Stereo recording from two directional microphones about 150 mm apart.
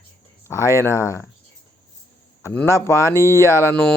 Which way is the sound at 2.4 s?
15° left (ahead or behind).